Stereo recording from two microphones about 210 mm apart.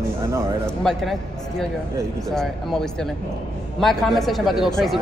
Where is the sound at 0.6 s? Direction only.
Centre (ahead or behind).